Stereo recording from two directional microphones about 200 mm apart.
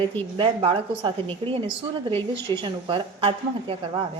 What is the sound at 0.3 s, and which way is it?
A woman's voice, 25° right (ahead or behind).